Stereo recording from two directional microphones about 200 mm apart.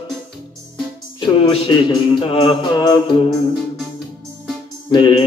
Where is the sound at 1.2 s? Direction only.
25° left (ahead or behind).